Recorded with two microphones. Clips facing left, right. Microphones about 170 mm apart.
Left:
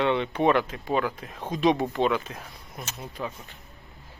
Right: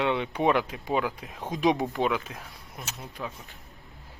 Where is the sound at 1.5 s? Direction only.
15° right (ahead or behind).